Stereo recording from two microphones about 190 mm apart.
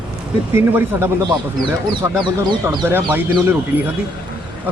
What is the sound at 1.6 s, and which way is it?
Speech, 25° right (ahead or behind).